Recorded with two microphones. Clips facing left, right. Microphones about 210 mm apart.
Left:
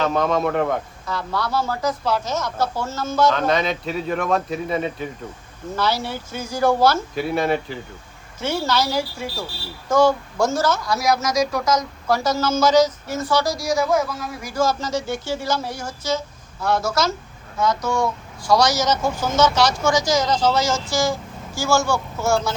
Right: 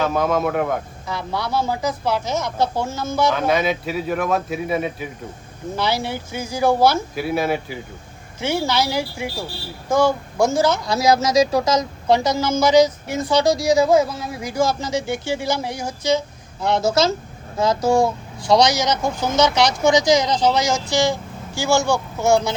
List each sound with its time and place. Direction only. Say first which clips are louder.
0.0 s a man's voice: even; 5° right (ahead or behind); by 14.5 s 25° right (ahead or behind)
14.5 s a man's voice: right 1 dB; 10° right (ahead or behind)